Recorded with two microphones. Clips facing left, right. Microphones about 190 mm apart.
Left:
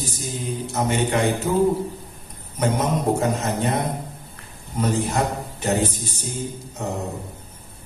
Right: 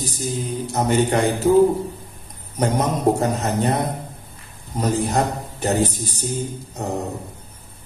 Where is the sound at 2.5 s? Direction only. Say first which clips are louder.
Right 1 dB; 40° right (ahead or behind).